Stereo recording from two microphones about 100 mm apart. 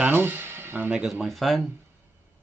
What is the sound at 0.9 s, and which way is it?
Speech, 5° right (ahead or behind).